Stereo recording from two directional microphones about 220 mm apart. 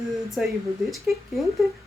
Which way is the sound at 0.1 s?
Centre (ahead or behind).